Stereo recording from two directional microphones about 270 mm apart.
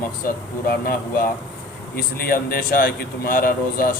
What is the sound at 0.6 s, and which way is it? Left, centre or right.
Speech, left.